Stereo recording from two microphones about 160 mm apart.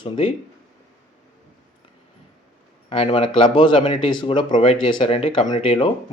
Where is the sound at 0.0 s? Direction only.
35° left (ahead or behind).